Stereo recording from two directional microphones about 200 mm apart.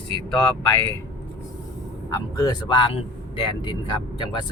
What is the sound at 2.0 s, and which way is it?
Speech, 15° left (ahead or behind).